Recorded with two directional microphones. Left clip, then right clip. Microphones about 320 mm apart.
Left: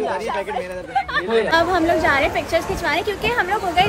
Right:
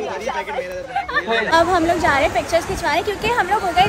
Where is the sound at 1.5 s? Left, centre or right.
Centre.